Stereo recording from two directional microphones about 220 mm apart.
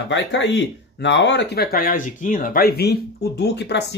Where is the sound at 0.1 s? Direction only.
55° left (ahead or behind).